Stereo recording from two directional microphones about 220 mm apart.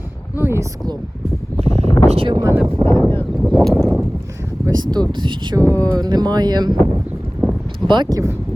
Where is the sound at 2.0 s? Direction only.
25° right (ahead or behind).